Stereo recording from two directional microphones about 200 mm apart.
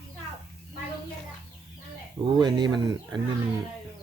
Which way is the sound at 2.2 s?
20° right (ahead or behind).